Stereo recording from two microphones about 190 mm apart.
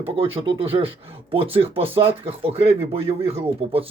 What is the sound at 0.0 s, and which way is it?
Speech, 30° right (ahead or behind).